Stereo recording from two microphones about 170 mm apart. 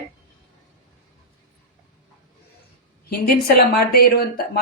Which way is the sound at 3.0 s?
65° left (ahead or behind).